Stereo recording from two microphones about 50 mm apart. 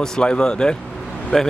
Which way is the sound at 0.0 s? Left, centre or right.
Centre.